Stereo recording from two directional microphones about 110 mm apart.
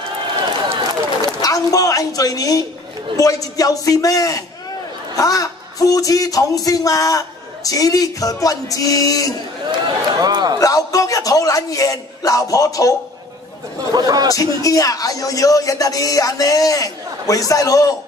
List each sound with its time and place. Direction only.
1.4 s speech: 30° left (ahead or behind)
9.7 s a sound: 40° right (ahead or behind)
10.6 s speech: 30° left (ahead or behind)
13.9 s speech: 35° right (ahead or behind)
14.3 s speech: 30° left (ahead or behind)